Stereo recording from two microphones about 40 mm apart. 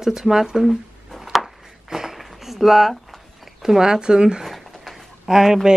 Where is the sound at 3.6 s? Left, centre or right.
Centre.